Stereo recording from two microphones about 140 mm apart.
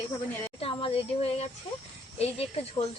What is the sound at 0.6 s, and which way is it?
Speech, 45° left (ahead or behind).